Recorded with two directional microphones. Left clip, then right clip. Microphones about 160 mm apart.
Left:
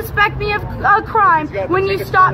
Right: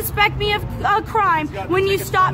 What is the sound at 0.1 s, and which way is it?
Speech, 20° right (ahead or behind).